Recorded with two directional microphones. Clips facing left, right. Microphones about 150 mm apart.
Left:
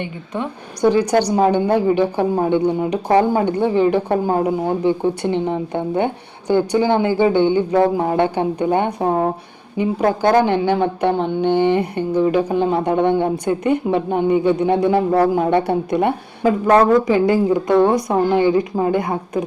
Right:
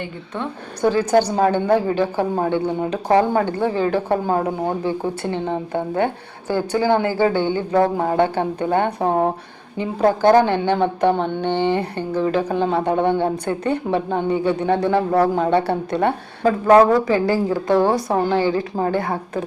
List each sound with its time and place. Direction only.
0.0 s a woman's voice: 15° left (ahead or behind)
16.6 s speech: 5° right (ahead or behind)
17.1 s speech: 20° left (ahead or behind)
17.7 s a woman's voice: 5° right (ahead or behind)
18.3 s a woman's voice: 15° left (ahead or behind)